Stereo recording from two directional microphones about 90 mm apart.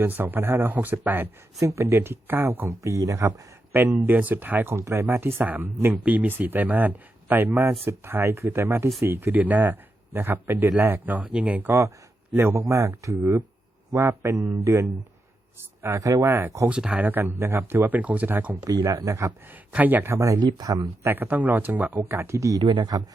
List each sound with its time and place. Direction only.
0.0 s speech: 20° right (ahead or behind)
1.6 s speech: 30° right (ahead or behind)
3.7 s speech: 20° right (ahead or behind)
12.4 s speech: 30° right (ahead or behind)
16.6 s speech: 10° right (ahead or behind)
18.6 s speech: 45° right (ahead or behind)
19.7 s speech: 20° right (ahead or behind)
20.4 s speech: 50° right (ahead or behind)
21.0 s speech: 25° right (ahead or behind)
22.6 s speech: 55° right (ahead or behind)